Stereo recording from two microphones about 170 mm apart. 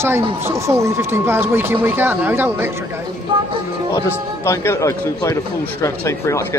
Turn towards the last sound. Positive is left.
turn(degrees=15)  # may be behind; listen again after turning